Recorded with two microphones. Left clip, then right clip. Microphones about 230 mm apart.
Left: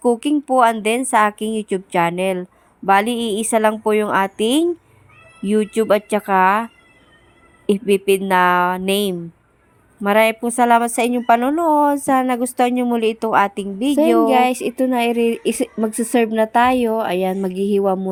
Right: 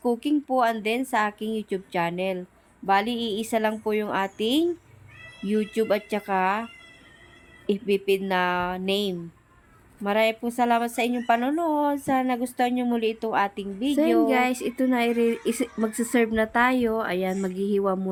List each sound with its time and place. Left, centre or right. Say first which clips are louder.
0.0 s a woman's voice: left 7 dB; left
7.7 s a woman's voice: left 8 dB; left